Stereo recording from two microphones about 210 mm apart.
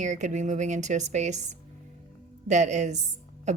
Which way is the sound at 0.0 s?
35° right (ahead or behind).